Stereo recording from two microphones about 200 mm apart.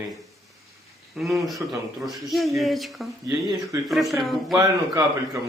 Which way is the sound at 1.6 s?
10° right (ahead or behind).